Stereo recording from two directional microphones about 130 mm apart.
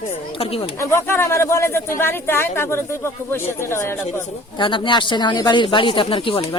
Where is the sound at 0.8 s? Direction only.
20° left (ahead or behind).